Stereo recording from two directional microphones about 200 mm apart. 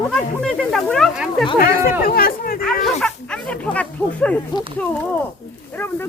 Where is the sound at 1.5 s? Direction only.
45° left (ahead or behind).